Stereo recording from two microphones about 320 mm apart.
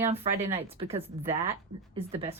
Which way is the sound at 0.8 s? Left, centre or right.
Centre.